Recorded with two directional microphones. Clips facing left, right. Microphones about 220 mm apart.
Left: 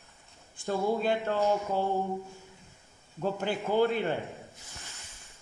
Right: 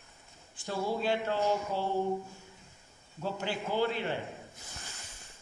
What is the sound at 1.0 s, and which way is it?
Speech, 50° left (ahead or behind).